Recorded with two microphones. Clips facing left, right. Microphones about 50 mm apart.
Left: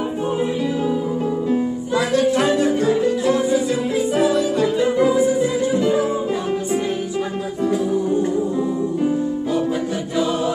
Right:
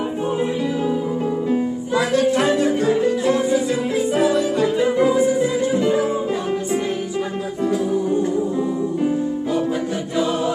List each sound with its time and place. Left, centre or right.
2.0 s music: centre
3.4 s music: centre